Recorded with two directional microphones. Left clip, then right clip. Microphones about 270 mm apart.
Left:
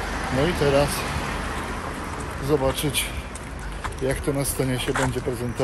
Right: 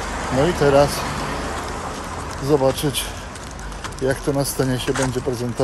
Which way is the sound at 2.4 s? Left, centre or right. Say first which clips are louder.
Right 5 dB; centre.